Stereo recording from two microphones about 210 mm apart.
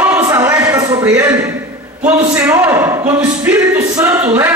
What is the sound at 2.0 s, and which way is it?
Speech, 10° right (ahead or behind).